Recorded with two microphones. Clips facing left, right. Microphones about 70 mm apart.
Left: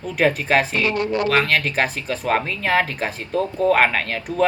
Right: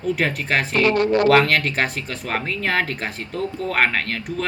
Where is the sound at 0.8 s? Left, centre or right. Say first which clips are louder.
Right 4 dB; right.